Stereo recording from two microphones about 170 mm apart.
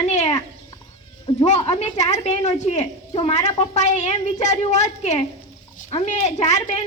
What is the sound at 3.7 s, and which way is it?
A woman's voice, 45° left (ahead or behind).